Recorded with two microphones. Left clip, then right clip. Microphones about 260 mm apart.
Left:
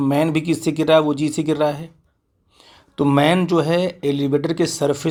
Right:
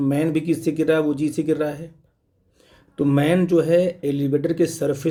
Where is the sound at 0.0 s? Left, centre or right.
Centre.